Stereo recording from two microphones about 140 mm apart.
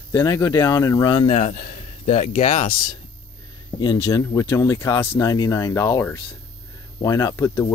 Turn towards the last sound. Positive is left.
turn(degrees=20)  # may be behind; listen again after turning